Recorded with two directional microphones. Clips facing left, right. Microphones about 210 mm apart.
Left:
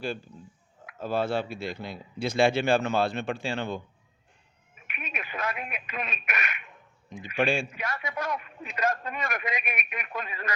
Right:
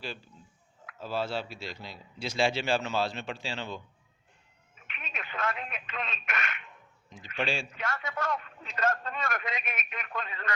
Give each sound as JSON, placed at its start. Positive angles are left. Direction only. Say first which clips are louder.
{"t": 0.9, "sound": "a man's voice", "louder": "left 5 dB", "side_deg": 55}
{"t": 4.9, "sound": "speech", "louder": "left 2 dB", "side_deg": 15}
{"t": 7.3, "sound": "a man's voice", "louder": "left 6 dB", "side_deg": 55}
{"t": 7.7, "sound": "a man's voice", "louder": "left 1 dB", "side_deg": 15}